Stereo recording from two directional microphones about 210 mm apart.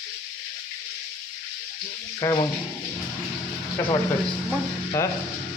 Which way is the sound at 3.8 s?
15° left (ahead or behind).